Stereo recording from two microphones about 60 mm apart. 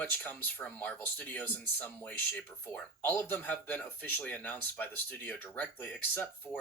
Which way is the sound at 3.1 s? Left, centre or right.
Left.